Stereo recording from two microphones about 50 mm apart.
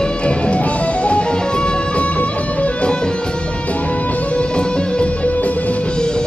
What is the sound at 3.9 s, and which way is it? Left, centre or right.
Music, left.